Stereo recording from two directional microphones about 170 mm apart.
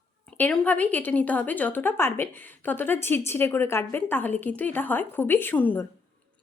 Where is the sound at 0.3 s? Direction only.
5° left (ahead or behind).